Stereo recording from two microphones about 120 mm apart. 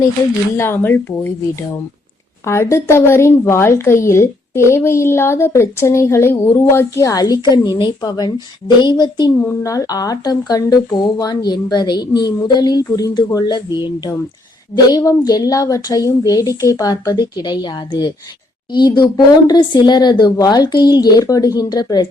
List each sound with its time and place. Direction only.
0.5 s speech: 20° left (ahead or behind)
2.4 s a woman's voice: 25° left (ahead or behind)